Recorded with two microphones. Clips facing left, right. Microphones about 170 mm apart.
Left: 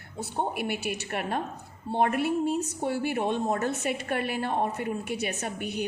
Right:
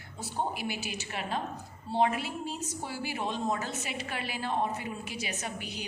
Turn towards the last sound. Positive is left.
turn(degrees=55)  # may be behind; listen again after turning